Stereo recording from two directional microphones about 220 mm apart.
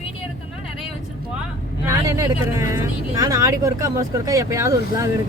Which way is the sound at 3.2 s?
15° right (ahead or behind).